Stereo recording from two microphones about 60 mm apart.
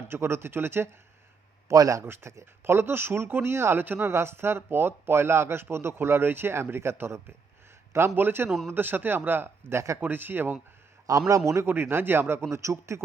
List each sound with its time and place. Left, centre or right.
0.1 s speech: right
1.7 s a man's voice: right
2.0 s speech: right
11.3 s a man's voice: right
11.6 s speech: right